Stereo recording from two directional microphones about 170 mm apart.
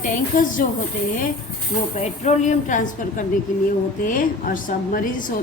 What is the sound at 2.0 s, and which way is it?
A woman's voice, 40° left (ahead or behind).